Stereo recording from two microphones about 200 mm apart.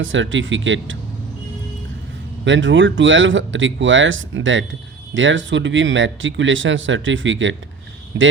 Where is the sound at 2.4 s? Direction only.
70° right (ahead or behind).